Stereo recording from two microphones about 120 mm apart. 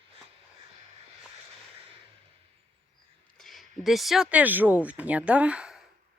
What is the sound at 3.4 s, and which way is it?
Speech, centre (ahead or behind).